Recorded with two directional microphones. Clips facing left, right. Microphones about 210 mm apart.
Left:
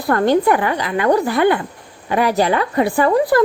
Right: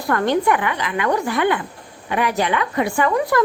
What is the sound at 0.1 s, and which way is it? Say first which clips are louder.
A woman's voice: left 4 dB; 35° left (ahead or behind).